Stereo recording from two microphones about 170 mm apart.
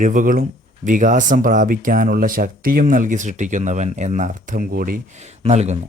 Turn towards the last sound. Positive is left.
turn(degrees=-40)  # may be behind; listen again after turning